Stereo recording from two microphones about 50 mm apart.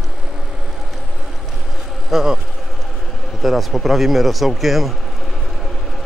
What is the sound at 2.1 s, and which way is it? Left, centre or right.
Speech, centre.